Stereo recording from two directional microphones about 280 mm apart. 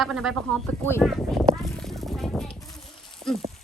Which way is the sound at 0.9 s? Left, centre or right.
Centre.